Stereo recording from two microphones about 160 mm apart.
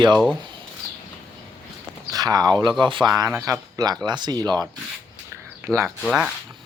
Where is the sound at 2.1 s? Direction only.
25° right (ahead or behind).